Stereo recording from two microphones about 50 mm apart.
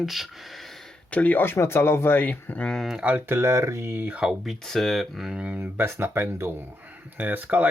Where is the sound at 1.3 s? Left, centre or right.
Left.